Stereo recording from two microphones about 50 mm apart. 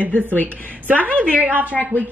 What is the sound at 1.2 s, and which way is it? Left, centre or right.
Speech, right.